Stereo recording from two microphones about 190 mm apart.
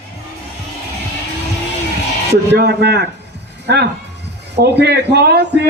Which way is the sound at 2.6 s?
60° right (ahead or behind).